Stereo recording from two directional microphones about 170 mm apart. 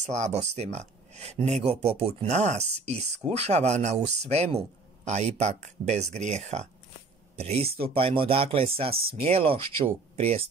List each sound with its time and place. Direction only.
0.0 s speech: 40° right (ahead or behind)